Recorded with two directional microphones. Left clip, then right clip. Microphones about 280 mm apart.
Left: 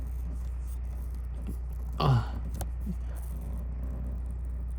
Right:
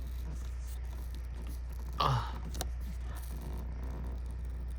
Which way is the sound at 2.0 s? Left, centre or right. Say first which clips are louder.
Left 1 dB; centre.